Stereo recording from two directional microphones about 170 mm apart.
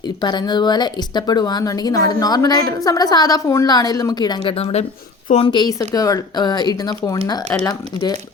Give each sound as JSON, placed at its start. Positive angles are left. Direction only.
{"t": 0.2, "sound": "a woman's voice", "side_deg": 25}